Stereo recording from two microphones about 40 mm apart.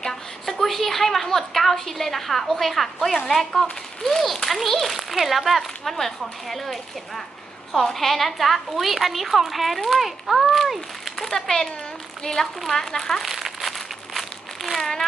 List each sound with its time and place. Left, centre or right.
0.0 s a woman's voice: centre
13.2 s crumpling: centre